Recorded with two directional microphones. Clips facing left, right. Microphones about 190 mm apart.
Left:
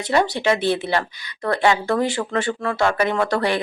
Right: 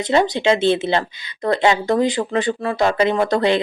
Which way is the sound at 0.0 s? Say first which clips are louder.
Right 3 dB; 20° right (ahead or behind).